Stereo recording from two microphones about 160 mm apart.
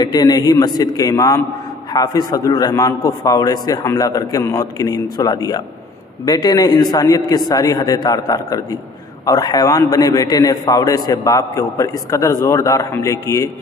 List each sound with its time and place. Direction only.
0.0 s a man's voice: 25° left (ahead or behind)